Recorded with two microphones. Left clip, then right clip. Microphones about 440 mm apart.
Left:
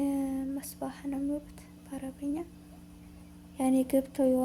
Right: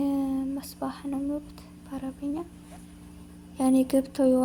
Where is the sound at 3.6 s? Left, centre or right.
Left.